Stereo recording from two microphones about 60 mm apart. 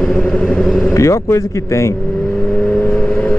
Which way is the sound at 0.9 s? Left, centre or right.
Left.